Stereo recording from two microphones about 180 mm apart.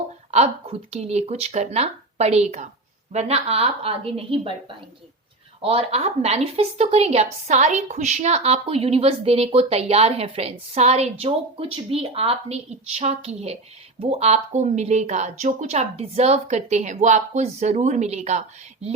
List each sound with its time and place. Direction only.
0.3 s a woman's voice: 35° right (ahead or behind)
5.6 s a woman's voice: 35° right (ahead or behind)